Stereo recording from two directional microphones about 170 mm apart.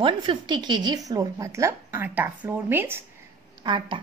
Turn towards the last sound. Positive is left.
turn(degrees=-30)  # may be behind; listen again after turning